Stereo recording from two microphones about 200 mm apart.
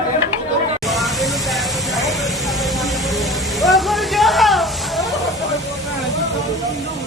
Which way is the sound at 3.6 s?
Centre (ahead or behind).